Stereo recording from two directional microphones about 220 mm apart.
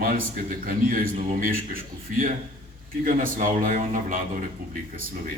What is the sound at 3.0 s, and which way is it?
A man's voice, 40° right (ahead or behind).